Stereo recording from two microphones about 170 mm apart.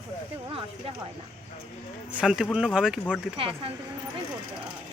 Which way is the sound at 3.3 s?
35° right (ahead or behind).